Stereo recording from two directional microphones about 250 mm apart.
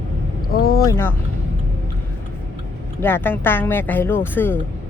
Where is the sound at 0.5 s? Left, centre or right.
Left.